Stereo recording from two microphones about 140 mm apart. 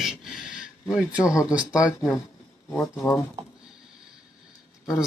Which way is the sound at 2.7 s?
15° left (ahead or behind).